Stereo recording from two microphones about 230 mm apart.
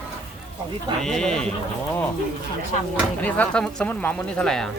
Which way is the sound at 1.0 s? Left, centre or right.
Centre.